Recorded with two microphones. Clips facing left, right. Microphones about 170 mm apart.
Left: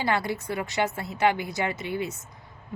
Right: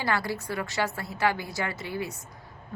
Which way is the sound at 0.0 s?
20° left (ahead or behind).